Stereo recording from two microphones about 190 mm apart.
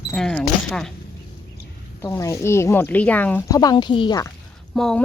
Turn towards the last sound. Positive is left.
turn(degrees=5)  # may be behind; listen again after turning